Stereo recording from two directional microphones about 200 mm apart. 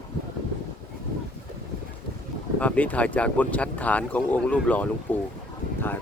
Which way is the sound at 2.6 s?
5° left (ahead or behind).